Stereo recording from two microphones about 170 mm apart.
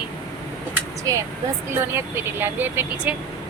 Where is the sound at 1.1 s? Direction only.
20° right (ahead or behind).